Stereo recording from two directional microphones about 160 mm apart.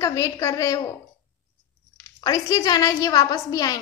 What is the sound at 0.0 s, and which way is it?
Speech, 20° left (ahead or behind).